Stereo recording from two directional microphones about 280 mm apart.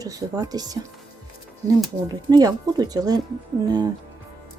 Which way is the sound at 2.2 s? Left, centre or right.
Centre.